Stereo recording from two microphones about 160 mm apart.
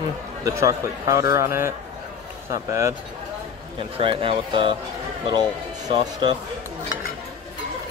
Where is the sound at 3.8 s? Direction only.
35° right (ahead or behind).